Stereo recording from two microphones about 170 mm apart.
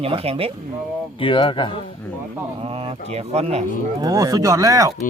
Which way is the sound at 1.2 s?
30° left (ahead or behind).